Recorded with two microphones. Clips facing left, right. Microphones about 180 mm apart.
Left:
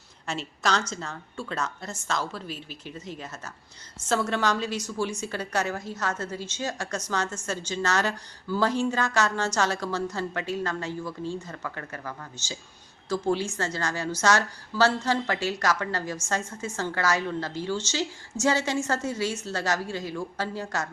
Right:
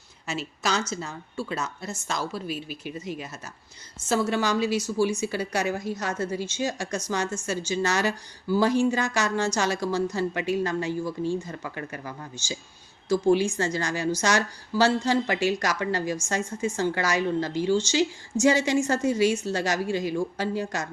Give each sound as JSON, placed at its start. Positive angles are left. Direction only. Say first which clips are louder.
{"t": 0.3, "sound": "a woman's voice", "louder": "even", "side_deg": -5}